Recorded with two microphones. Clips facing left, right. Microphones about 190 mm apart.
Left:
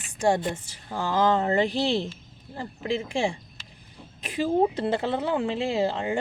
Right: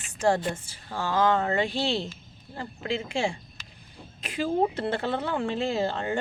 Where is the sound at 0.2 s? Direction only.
15° left (ahead or behind).